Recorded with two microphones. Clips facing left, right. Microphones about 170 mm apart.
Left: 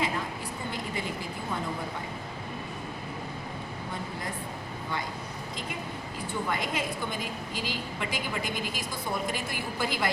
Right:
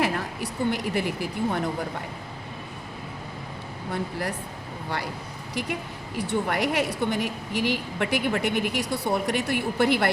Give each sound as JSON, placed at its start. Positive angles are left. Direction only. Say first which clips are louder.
{"t": 0.0, "sound": "a woman's voice", "louder": "right 5 dB", "side_deg": -75}
{"t": 3.9, "sound": "a woman's voice", "louder": "right 9 dB", "side_deg": -75}
{"t": 6.1, "sound": "a woman's voice", "louder": "right 7 dB", "side_deg": -75}